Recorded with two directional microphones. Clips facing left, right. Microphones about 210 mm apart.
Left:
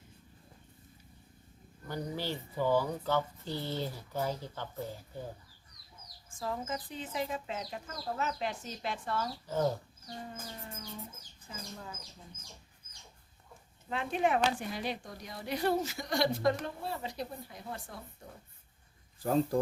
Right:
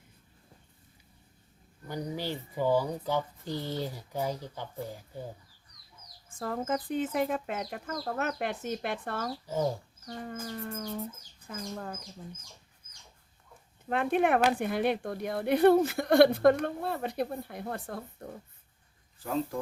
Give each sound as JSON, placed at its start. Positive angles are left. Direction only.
{"t": 1.9, "sound": "speech", "side_deg": -15}
{"t": 6.4, "sound": "speech", "side_deg": -55}
{"t": 9.5, "sound": "speech", "side_deg": -10}
{"t": 10.1, "sound": "chicken", "side_deg": -65}
{"t": 11.4, "sound": "speech", "side_deg": -55}
{"t": 13.9, "sound": "speech", "side_deg": -55}
{"t": 19.2, "sound": "speech", "side_deg": 40}